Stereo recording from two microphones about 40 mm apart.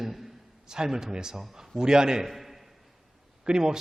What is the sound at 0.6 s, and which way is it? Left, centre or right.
A man's voice, centre.